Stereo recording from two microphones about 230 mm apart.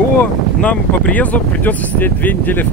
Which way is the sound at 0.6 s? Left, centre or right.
Centre.